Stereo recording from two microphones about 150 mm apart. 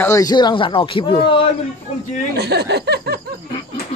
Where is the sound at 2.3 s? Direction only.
90° right.